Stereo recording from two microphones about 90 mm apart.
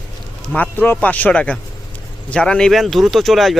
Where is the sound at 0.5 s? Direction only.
20° left (ahead or behind).